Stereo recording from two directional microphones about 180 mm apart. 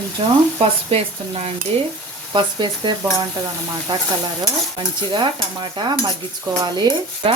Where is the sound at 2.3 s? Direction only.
25° right (ahead or behind).